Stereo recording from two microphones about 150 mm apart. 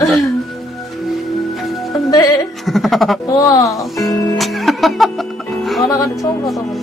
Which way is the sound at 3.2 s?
25° left (ahead or behind).